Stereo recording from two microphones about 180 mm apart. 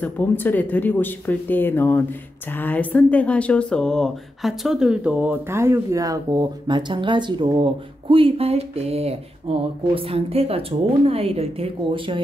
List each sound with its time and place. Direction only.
0.0 s a woman's voice: 10° left (ahead or behind); by 12.2 s 30° right (ahead or behind)